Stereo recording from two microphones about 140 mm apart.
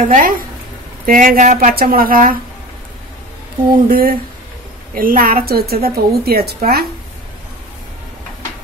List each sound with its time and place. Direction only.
0.0 s speech: 70° right (ahead or behind)
1.0 s speech: 80° right
3.9 s a woman's voice: 90° right